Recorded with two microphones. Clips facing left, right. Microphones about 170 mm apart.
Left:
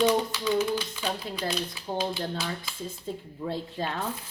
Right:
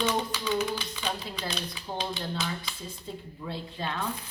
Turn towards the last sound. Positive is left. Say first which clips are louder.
# left 4 dB
turn(degrees=40)  # may be behind; listen again after turning